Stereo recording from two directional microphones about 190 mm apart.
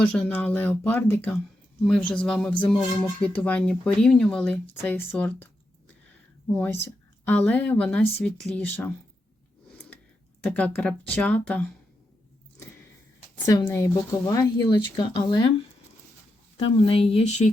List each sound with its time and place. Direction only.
0.0 s speech: 5° left (ahead or behind)
6.6 s speech: 10° left (ahead or behind)
10.4 s speech: 5° left (ahead or behind); by 15.5 s 25° left (ahead or behind)
16.7 s speech: 30° left (ahead or behind)